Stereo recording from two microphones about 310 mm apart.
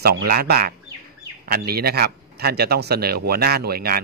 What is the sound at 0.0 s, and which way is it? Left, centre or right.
Speech, right.